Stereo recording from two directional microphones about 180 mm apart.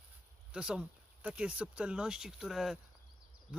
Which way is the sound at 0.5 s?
5° right (ahead or behind).